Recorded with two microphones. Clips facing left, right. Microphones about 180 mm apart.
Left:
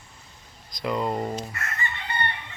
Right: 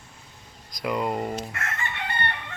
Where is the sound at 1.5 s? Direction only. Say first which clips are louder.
Right 1 dB; 75° right (ahead or behind).